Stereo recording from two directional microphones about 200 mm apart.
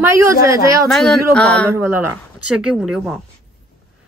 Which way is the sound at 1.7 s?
10° right (ahead or behind).